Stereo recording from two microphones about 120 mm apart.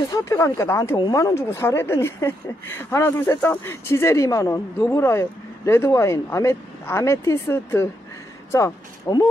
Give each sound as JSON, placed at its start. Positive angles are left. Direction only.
{"t": 0.1, "sound": "speech", "side_deg": 25}